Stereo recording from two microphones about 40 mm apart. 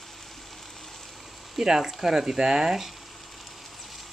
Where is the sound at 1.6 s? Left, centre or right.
Centre.